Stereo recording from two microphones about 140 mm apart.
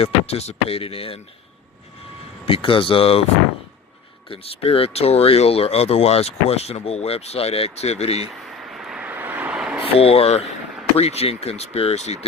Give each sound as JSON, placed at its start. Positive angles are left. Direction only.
{"t": 0.0, "sound": "speech", "side_deg": 50}
{"t": 2.5, "sound": "speech", "side_deg": 40}
{"t": 4.3, "sound": "speech", "side_deg": 45}
{"t": 8.4, "sound": "vehicle", "side_deg": 0}
{"t": 9.8, "sound": "speech", "side_deg": 45}